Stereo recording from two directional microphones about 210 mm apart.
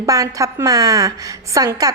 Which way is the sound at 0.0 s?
15° right (ahead or behind).